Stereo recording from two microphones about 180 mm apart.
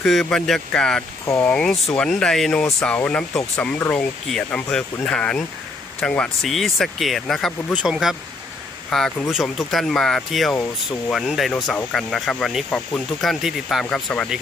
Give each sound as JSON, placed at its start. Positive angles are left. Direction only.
{"t": 0.0, "sound": "speech", "side_deg": 0}
{"t": 1.2, "sound": "speech", "side_deg": 15}
{"t": 1.5, "sound": "speech", "side_deg": 5}